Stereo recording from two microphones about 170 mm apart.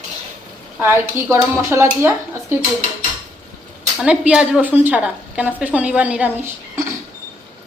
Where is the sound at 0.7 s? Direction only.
15° right (ahead or behind).